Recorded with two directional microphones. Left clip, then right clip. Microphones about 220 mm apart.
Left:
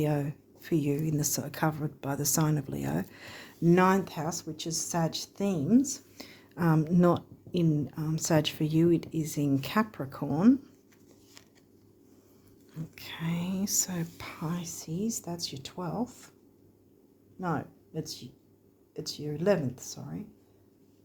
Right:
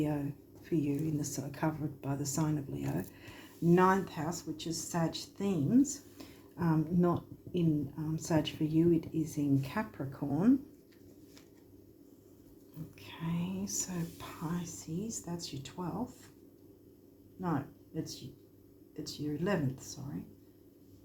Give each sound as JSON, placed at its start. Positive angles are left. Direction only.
{"t": 0.0, "sound": "speech", "side_deg": 50}
{"t": 13.0, "sound": "speech", "side_deg": 50}
{"t": 17.4, "sound": "speech", "side_deg": 50}